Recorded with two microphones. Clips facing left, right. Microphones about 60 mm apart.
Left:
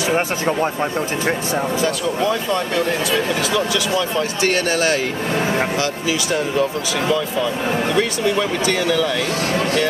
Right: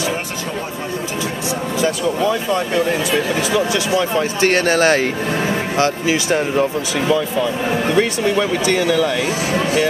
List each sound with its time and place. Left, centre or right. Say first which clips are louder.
2.2 s speech: right 1 dB; centre
3.1 s speech: right 1 dB; right
4.4 s speech: right 4 dB; right
7.9 s speech: right 3 dB; right